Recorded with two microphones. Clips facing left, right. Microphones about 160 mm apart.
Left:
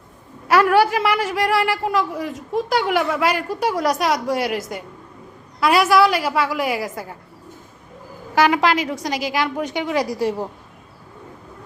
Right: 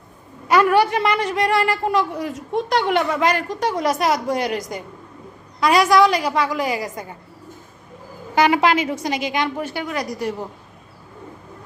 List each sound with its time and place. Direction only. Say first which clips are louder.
0.4 s a woman's voice: even; 5° left (ahead or behind)
8.4 s a woman's voice: even; centre (ahead or behind)
9.6 s a woman's voice: left 4 dB; 15° left (ahead or behind)